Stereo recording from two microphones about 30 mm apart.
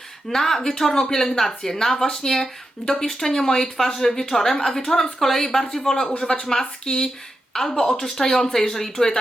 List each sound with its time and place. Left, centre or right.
0.3 s a woman's voice: centre
6.1 s speech: left
6.4 s a woman's voice: centre
7.5 s a woman's voice: centre